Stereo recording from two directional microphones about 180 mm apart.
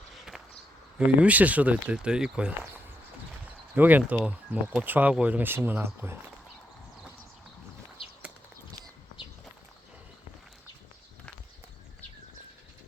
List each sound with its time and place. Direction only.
0.9 s speech: 10° right (ahead or behind)
8.0 s horse: 30° left (ahead or behind)